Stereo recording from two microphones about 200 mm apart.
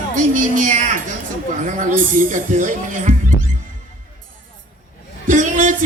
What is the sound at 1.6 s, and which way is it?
Speech, 40° right (ahead or behind).